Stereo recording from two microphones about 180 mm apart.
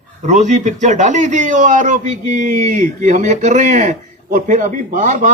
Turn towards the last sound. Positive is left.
turn(degrees=-45)  # may be behind; listen again after turning